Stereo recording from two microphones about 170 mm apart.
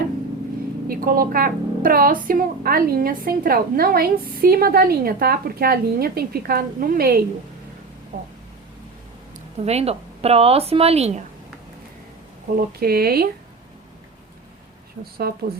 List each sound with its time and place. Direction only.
0.9 s a woman's voice: 60° right (ahead or behind)
8.1 s speech: 50° right (ahead or behind)
9.6 s speech: 35° right (ahead or behind)
12.5 s a woman's voice: 65° right (ahead or behind)
15.2 s a woman's voice: 65° right (ahead or behind)